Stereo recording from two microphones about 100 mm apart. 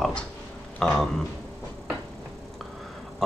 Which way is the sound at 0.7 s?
5° left (ahead or behind).